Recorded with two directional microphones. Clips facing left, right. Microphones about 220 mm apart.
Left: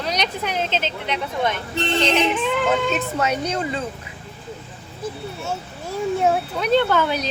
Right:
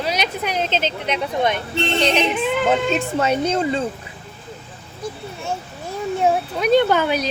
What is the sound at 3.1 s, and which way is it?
Speech, 30° right (ahead or behind).